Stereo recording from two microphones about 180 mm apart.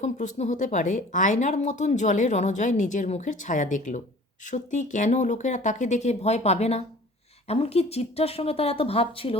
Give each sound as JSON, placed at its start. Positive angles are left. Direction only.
{"t": 0.0, "sound": "speech", "side_deg": 40}